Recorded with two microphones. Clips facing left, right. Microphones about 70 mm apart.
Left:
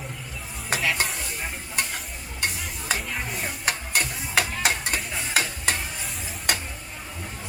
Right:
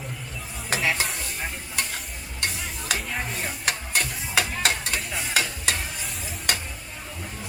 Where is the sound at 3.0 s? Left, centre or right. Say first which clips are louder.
Right 1 dB; centre.